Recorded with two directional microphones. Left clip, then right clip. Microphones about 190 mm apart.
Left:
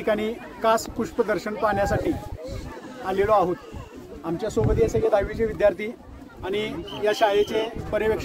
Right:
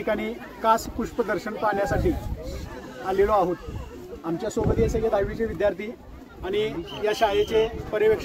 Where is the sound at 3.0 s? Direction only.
20° left (ahead or behind).